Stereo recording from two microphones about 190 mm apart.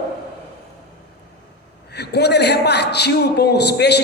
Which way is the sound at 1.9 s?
60° left (ahead or behind).